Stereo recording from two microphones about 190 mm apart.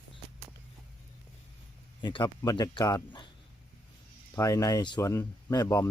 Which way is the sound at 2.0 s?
25° left (ahead or behind).